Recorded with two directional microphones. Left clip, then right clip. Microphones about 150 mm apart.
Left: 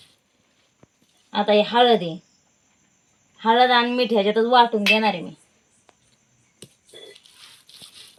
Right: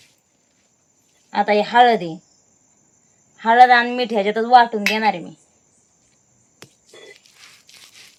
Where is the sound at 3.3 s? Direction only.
35° right (ahead or behind).